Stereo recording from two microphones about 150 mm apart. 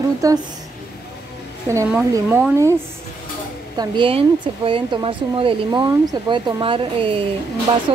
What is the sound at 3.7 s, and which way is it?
Speech, 35° right (ahead or behind).